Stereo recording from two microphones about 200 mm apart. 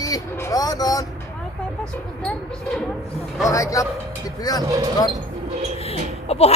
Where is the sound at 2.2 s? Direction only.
5° left (ahead or behind).